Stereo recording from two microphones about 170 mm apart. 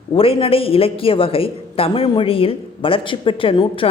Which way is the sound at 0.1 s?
35° left (ahead or behind).